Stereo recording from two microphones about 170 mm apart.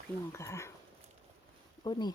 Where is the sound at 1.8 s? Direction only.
25° left (ahead or behind).